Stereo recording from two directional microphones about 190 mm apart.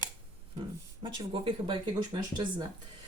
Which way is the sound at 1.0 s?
25° right (ahead or behind).